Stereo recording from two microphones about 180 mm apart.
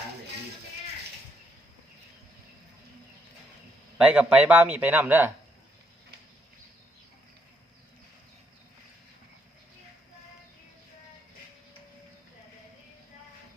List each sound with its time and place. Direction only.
3.9 s a man's voice: 5° right (ahead or behind)